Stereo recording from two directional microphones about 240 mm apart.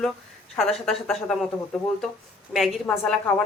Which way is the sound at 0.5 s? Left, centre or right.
Centre.